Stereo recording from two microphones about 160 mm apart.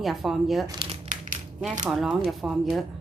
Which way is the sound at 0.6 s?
25° right (ahead or behind).